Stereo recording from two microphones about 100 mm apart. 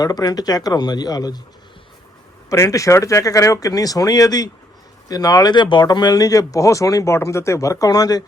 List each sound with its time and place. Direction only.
0.0 s speech: 40° left (ahead or behind)
2.5 s speech: 35° left (ahead or behind)